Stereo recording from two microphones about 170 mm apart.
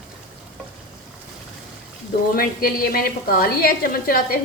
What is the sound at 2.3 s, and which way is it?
A woman's voice, 60° left (ahead or behind).